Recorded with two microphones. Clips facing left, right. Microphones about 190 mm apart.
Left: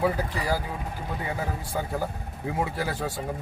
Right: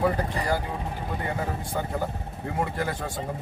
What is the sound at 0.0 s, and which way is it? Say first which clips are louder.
Speech: right 1 dB; 5° left (ahead or behind).